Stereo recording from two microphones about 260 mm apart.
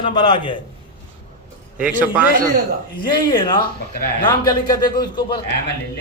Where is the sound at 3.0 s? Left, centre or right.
Centre.